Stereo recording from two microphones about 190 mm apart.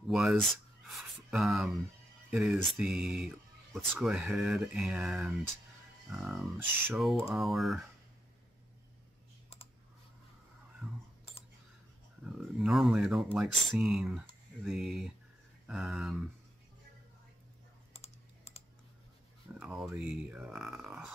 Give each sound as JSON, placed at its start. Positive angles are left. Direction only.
{"t": 0.1, "sound": "speech", "side_deg": 0}
{"t": 12.4, "sound": "speech", "side_deg": 0}
{"t": 17.9, "sound": "computer keyboard", "side_deg": 35}
{"t": 19.6, "sound": "speech", "side_deg": 0}